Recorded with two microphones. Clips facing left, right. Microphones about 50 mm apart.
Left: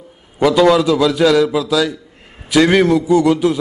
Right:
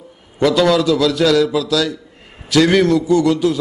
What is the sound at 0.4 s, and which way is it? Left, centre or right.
A man's voice, centre.